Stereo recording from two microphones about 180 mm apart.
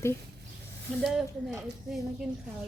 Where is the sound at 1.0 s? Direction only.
Centre (ahead or behind).